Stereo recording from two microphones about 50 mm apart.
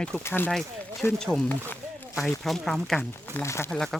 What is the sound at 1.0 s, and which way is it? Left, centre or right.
Speech, left.